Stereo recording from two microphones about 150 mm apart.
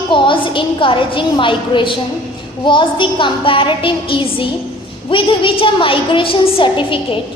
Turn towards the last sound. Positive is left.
turn(degrees=35)  # may be behind; listen again after turning